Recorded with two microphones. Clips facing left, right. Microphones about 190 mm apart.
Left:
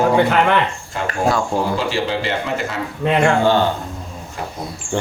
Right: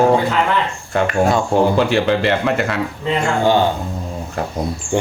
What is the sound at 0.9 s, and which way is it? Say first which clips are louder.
Speech: right 4 dB; 65° right (ahead or behind).